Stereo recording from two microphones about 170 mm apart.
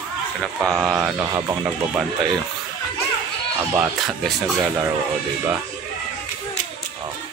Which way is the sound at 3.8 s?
Centre (ahead or behind).